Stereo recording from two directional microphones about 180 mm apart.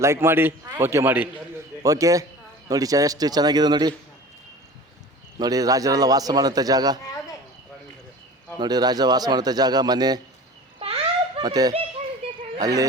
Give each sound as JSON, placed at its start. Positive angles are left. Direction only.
{"t": 0.0, "sound": "a man's voice", "side_deg": -15}
{"t": 5.4, "sound": "a man's voice", "side_deg": -20}
{"t": 8.5, "sound": "a man's voice", "side_deg": -25}
{"t": 10.8, "sound": "a sound", "side_deg": -30}
{"t": 12.5, "sound": "speech", "side_deg": -20}